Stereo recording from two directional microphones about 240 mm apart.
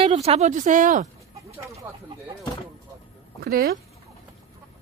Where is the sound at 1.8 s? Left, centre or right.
Centre.